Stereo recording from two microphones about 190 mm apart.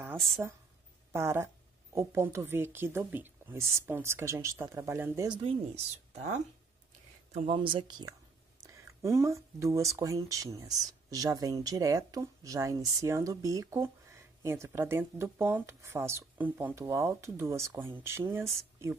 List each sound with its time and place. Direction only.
0.0 s speech: 10° right (ahead or behind)
7.3 s speech: 25° right (ahead or behind)
9.0 s speech: 15° right (ahead or behind)